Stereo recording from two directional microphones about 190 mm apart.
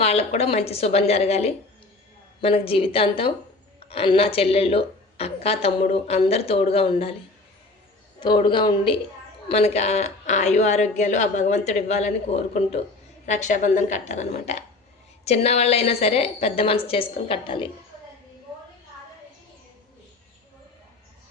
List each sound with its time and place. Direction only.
0.0 s a woman's voice: 35° left (ahead or behind)
8.2 s a woman's voice: 25° left (ahead or behind)